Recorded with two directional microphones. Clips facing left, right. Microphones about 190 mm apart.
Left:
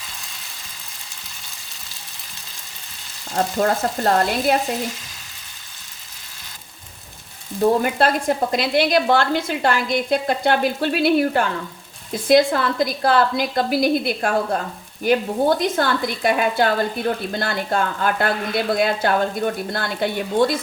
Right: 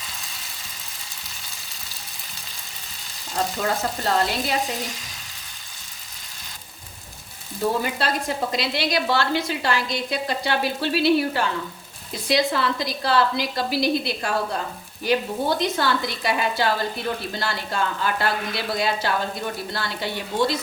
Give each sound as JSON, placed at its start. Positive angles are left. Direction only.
{"t": 3.3, "sound": "a woman's voice", "side_deg": 45}
{"t": 7.8, "sound": "a woman's voice", "side_deg": 50}